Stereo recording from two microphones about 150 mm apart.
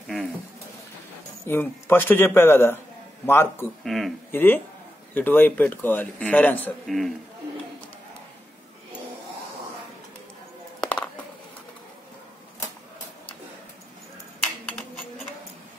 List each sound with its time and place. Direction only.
0.0 s a sound: centre (ahead or behind)
1.4 s a man's voice: 15° left (ahead or behind)
3.8 s speech: centre (ahead or behind)
4.3 s a man's voice: 15° left (ahead or behind)
6.9 s speech: centre (ahead or behind)
10.8 s a sound: 5° left (ahead or behind)